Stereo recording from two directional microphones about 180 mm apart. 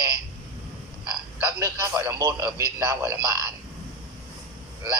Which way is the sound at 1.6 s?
15° right (ahead or behind).